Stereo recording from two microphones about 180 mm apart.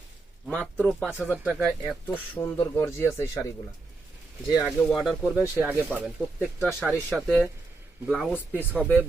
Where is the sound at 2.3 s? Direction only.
15° left (ahead or behind).